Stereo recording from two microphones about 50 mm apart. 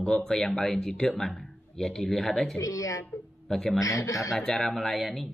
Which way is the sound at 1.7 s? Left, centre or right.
Centre.